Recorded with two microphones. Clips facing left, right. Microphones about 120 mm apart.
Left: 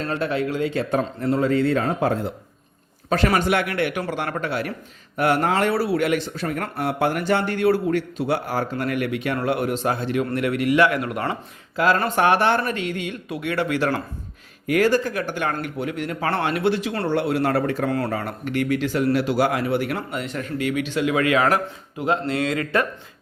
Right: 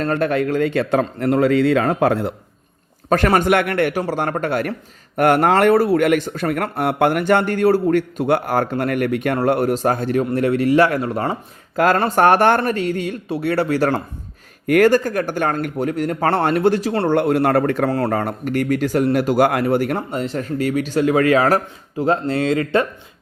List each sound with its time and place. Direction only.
0.0 s speech: 55° right (ahead or behind)
3.1 s speech: 50° right (ahead or behind)
8.7 s speech: 50° right (ahead or behind)
14.7 s speech: 55° right (ahead or behind); by 17.1 s 35° right (ahead or behind)
17.1 s speech: 50° right (ahead or behind)
17.8 s speech: 35° right (ahead or behind)
20.1 s speech: 35° right (ahead or behind)